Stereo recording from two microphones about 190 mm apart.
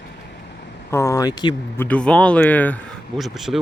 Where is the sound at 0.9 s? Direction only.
15° left (ahead or behind).